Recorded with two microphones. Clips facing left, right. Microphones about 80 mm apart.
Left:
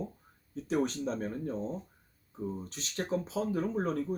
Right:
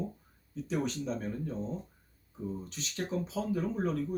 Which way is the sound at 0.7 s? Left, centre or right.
Left.